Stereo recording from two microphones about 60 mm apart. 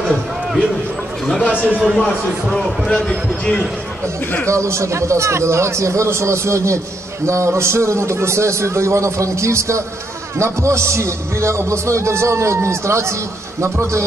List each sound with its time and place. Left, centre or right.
1.5 s a man's voice: centre
2.4 s speech: centre
2.9 s speech: centre
4.5 s a man's voice: right